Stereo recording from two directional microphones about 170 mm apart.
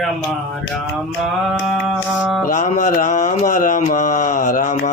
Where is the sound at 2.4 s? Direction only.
50° left (ahead or behind).